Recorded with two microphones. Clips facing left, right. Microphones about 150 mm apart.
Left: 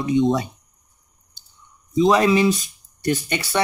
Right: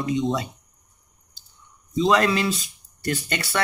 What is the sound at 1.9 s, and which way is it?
Speech, 15° left (ahead or behind).